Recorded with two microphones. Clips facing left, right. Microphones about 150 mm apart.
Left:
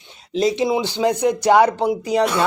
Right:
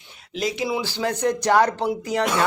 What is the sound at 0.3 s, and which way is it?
Speech, 25° left (ahead or behind).